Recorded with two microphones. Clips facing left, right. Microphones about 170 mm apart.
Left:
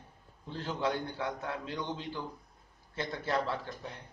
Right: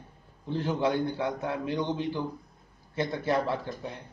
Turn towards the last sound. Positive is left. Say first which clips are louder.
# right 5 dB
turn(degrees=-15)  # may be behind; listen again after turning